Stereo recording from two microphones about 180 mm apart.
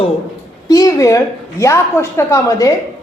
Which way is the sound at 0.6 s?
20° left (ahead or behind).